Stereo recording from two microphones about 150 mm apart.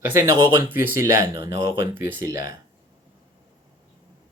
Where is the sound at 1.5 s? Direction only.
90° left.